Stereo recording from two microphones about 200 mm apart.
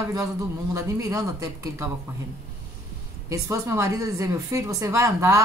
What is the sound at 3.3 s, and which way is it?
Speech, 15° right (ahead or behind).